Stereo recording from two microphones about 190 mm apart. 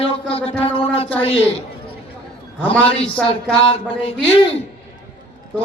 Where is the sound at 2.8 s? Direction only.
30° left (ahead or behind).